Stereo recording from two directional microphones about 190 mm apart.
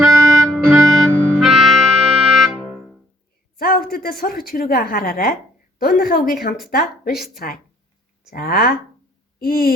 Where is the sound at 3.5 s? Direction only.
50° left (ahead or behind).